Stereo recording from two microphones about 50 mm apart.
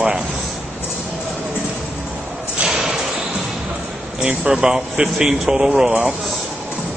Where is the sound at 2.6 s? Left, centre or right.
Centre.